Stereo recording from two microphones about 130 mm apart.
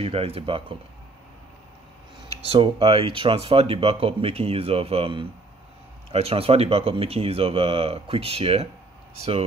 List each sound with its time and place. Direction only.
0.0 s speech: 50° right (ahead or behind)
2.4 s speech: 50° right (ahead or behind)